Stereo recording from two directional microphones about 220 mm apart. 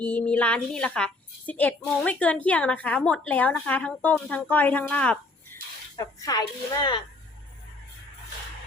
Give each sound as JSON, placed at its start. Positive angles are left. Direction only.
{"t": 0.0, "sound": "a woman's voice", "side_deg": 5}
{"t": 6.0, "sound": "a woman's voice", "side_deg": 15}